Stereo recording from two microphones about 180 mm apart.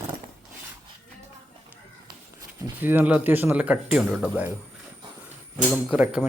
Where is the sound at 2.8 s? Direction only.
10° right (ahead or behind).